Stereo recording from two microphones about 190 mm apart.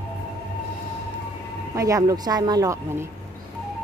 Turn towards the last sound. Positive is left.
turn(degrees=-15)  # may be behind; listen again after turning